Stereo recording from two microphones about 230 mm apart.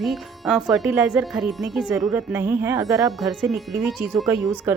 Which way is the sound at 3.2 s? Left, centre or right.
Centre.